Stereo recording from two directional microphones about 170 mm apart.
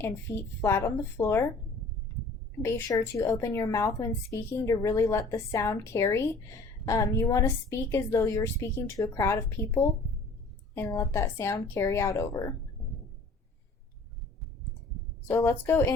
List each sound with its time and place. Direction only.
0.0 s speech: 15° left (ahead or behind)
2.6 s speech: 15° left (ahead or behind)
15.3 s speech: 15° left (ahead or behind)